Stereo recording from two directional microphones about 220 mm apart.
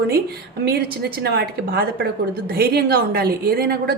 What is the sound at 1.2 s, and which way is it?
A woman's voice, 45° right (ahead or behind).